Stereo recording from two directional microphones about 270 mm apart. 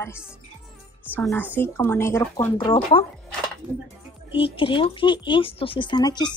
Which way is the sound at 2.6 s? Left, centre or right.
Centre.